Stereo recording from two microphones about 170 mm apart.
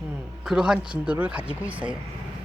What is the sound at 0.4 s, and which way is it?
Speech, 5° right (ahead or behind).